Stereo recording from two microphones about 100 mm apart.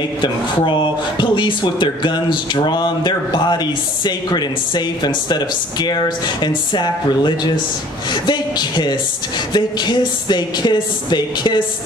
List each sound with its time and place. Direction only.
0.2 s speech: 50° left (ahead or behind)